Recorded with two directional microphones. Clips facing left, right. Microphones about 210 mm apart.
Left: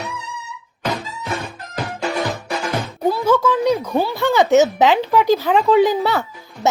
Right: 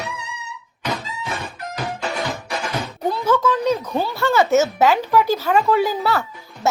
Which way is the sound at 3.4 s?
10° left (ahead or behind).